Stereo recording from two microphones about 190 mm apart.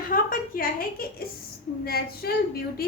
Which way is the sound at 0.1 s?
50° left (ahead or behind).